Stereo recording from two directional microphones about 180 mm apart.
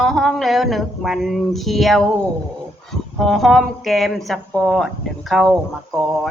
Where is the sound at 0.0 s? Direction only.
Centre (ahead or behind).